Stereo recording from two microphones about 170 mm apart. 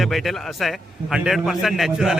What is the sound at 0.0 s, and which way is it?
Speech, centre (ahead or behind).